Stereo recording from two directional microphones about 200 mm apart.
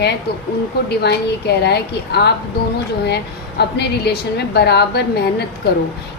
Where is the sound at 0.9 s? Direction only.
55° left (ahead or behind).